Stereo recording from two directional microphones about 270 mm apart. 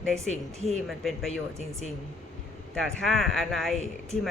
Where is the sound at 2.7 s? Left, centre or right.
Centre.